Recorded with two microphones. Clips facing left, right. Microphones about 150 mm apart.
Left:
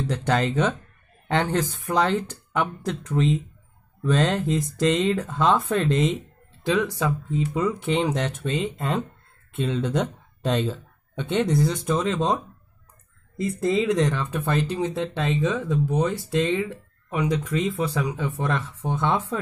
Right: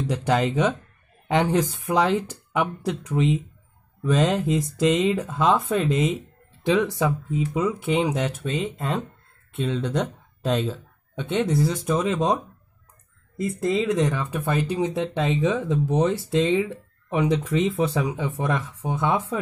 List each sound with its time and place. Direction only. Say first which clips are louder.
0.0 s speech: right 1 dB; 10° right (ahead or behind)
6.6 s speech: right 2 dB; 20° right (ahead or behind)
7.2 s speech: even; 5° right (ahead or behind)
13.4 s speech: left 1 dB; centre (ahead or behind)